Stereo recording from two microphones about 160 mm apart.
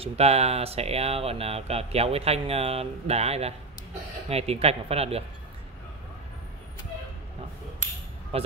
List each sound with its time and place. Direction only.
0.0 s speech: 40° right (ahead or behind)
8.3 s speech: 40° right (ahead or behind)